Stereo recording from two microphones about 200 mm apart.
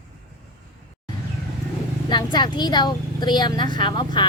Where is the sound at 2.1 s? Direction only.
20° left (ahead or behind).